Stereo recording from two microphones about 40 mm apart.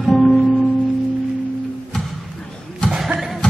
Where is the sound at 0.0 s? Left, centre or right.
Centre.